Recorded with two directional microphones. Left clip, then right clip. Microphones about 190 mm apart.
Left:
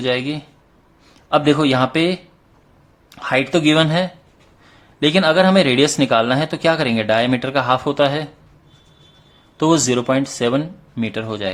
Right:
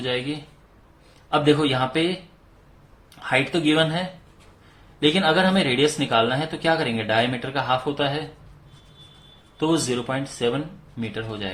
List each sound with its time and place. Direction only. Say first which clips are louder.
0.0 s speech: left 6 dB; 40° left (ahead or behind)
3.2 s speech: left 5 dB; 40° left (ahead or behind)
9.6 s speech: left 7 dB; 45° left (ahead or behind)